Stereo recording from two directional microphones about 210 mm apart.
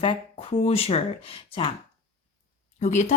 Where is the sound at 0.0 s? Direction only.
25° left (ahead or behind).